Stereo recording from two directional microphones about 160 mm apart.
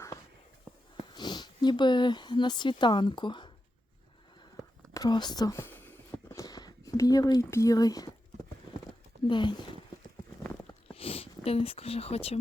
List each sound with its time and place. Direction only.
1.1 s speech: 25° left (ahead or behind)
4.9 s a sound: 25° left (ahead or behind)
8.3 s clip-clop: 45° right (ahead or behind)
9.2 s speech: 30° left (ahead or behind)
10.4 s a sound: 10° left (ahead or behind)
10.9 s speech: 35° left (ahead or behind)